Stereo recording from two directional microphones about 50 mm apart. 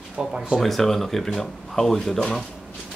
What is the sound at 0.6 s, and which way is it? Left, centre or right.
Speech, centre.